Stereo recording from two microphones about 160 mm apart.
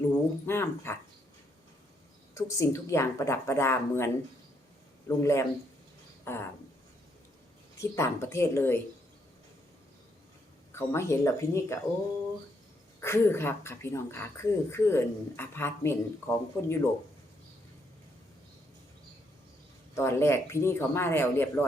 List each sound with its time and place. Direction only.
0.4 s speech: 15° left (ahead or behind)
2.3 s speech: 20° left (ahead or behind)
6.2 s a sound: 15° left (ahead or behind)
7.8 s speech: 15° left (ahead or behind)
10.7 s speech: 15° left (ahead or behind)
13.0 s speech: 15° left (ahead or behind)
19.9 s speech: 15° left (ahead or behind)